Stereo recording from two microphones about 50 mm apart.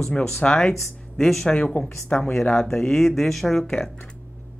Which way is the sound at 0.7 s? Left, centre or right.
Centre.